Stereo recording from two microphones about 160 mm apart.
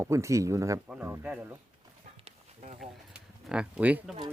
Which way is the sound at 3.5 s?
5° right (ahead or behind).